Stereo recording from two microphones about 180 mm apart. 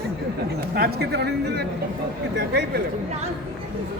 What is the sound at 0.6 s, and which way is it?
A man's voice, 60° right (ahead or behind).